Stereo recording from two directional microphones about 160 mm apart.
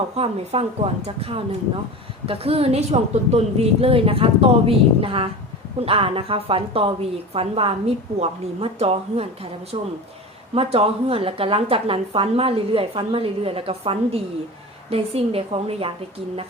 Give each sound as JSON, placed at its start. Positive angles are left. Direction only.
{"t": 0.2, "sound": "a woman's voice", "side_deg": -40}